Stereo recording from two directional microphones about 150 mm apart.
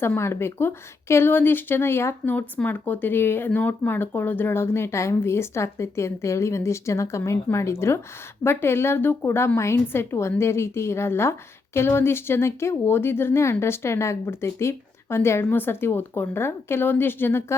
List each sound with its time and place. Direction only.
0.0 s a woman's voice: 15° left (ahead or behind)